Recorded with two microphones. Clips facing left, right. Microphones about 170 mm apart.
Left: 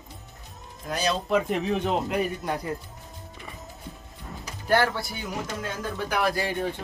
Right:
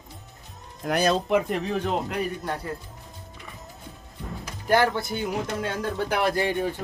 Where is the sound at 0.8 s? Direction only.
60° right (ahead or behind).